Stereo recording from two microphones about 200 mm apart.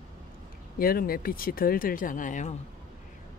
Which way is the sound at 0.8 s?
50° left (ahead or behind).